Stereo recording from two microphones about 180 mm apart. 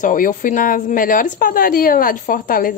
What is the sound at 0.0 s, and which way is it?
Speech, 50° left (ahead or behind).